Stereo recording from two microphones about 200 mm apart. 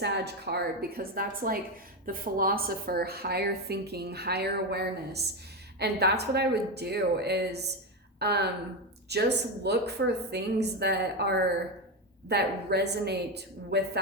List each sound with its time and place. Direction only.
0.0 s a woman's voice: 55° right (ahead or behind)